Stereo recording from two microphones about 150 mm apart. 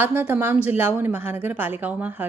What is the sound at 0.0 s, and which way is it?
Speech, 15° right (ahead or behind).